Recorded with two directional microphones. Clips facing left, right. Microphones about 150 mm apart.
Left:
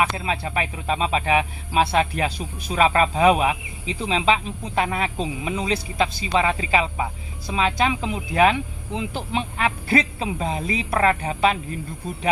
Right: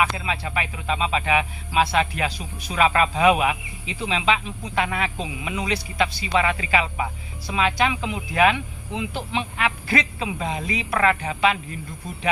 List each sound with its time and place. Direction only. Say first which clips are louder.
0.0 s speech: left 1 dB; 35° left (ahead or behind)